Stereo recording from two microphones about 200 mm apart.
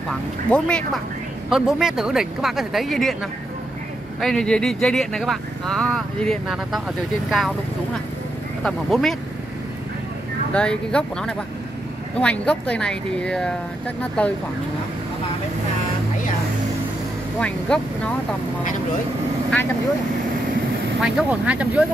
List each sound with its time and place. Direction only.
0.5 s speech: 5° left (ahead or behind)
8.6 s speech: centre (ahead or behind)
10.5 s speech: 5° left (ahead or behind)
17.4 s speech: 5° left (ahead or behind)
21.0 s speech: 5° right (ahead or behind)